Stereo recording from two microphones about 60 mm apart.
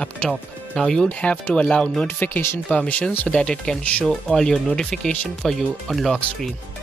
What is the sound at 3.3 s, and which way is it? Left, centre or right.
Speech, centre.